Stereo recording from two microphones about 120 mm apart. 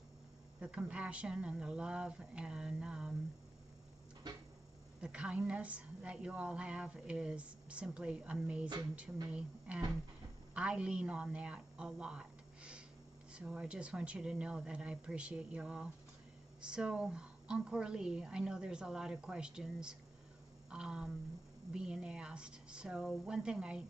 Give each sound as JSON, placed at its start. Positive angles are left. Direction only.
{"t": 0.6, "sound": "a woman's voice", "side_deg": -10}
{"t": 4.2, "sound": "a sound", "side_deg": -40}
{"t": 5.0, "sound": "a woman's voice", "side_deg": -10}